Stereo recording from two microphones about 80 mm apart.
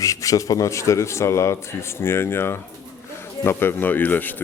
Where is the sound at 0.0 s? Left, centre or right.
Left.